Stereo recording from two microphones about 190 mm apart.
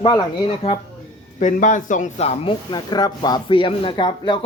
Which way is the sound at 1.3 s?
40° left (ahead or behind).